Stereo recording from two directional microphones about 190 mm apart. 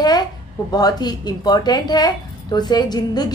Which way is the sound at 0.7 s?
20° left (ahead or behind).